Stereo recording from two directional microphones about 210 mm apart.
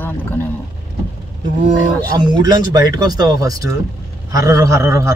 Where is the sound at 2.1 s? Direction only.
20° right (ahead or behind).